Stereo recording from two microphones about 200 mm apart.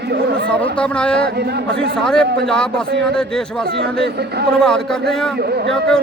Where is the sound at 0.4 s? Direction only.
5° left (ahead or behind).